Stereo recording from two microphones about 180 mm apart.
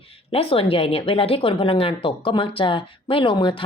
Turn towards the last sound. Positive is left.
turn(degrees=25)  # may be behind; listen again after turning